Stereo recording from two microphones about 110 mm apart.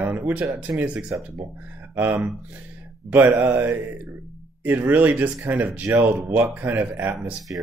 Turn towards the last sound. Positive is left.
turn(degrees=-20)  # may be behind; listen again after turning